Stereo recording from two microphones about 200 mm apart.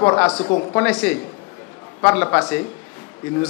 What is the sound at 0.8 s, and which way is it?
A man's voice, 5° left (ahead or behind).